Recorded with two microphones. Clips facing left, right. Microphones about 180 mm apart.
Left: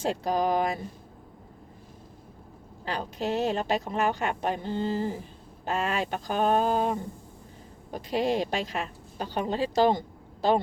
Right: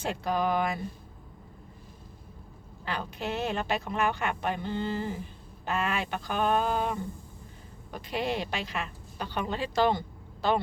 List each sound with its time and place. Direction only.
0.0 s speech: 35° left (ahead or behind)
2.8 s speech: 35° left (ahead or behind)